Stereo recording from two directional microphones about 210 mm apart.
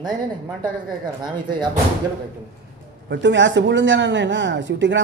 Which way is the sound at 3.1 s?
60° right (ahead or behind).